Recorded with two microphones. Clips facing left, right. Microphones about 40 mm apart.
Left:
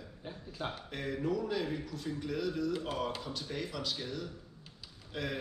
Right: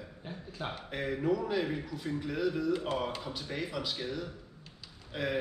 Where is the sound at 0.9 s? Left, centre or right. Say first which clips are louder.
Right 4 dB; centre.